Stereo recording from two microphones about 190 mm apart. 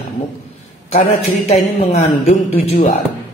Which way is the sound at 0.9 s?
40° left (ahead or behind).